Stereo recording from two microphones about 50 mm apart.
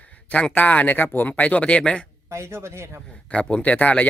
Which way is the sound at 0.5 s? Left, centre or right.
Left.